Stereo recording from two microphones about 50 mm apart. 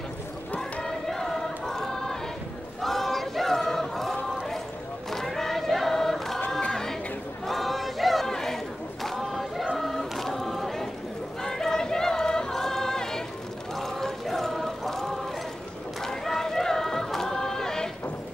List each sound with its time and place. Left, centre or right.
0.8 s choir: centre
6.6 s choir: centre
7.4 s choir: centre
11.4 s choir: centre
13.7 s chant: centre
16.0 s a sound: centre